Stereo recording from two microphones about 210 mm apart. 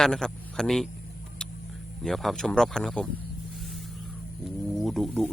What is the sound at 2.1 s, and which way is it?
Speech, centre (ahead or behind).